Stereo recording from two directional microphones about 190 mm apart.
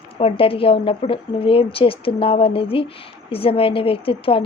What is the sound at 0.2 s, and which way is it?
A woman's voice, 30° left (ahead or behind).